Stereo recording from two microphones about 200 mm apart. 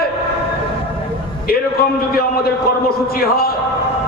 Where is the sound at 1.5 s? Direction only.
50° left (ahead or behind).